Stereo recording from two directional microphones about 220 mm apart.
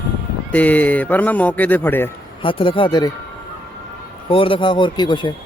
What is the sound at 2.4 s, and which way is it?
Speech, 25° left (ahead or behind).